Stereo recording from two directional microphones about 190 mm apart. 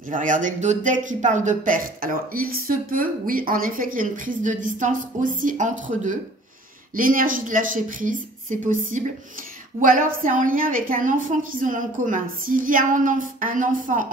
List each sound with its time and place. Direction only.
0.1 s speech: 45° right (ahead or behind)